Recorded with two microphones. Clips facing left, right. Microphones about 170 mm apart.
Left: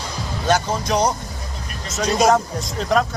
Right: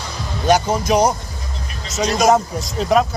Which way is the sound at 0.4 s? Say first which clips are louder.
Right 4 dB; 10° right (ahead or behind).